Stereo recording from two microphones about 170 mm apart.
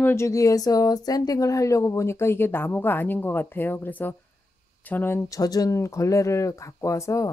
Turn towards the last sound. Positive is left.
turn(degrees=20)  # may be behind; listen again after turning